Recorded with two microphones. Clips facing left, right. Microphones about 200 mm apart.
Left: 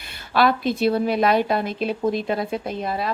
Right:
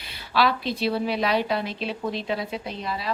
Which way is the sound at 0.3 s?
50° left (ahead or behind).